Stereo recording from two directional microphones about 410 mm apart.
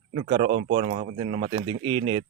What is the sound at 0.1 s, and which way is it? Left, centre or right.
Speech, centre.